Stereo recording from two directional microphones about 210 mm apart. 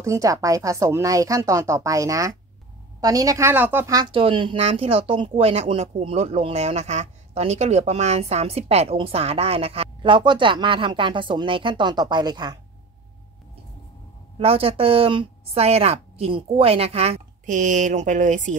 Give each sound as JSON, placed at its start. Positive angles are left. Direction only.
{"t": 0.0, "sound": "a woman's voice", "side_deg": -15}
{"t": 14.4, "sound": "a woman's voice", "side_deg": -25}